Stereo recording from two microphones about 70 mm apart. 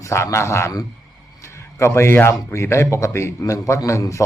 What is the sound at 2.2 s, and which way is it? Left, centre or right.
A man's voice, left.